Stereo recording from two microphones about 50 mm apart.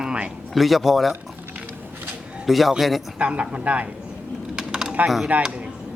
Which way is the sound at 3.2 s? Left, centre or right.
Right.